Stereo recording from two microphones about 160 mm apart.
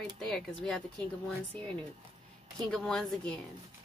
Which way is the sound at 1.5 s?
30° right (ahead or behind).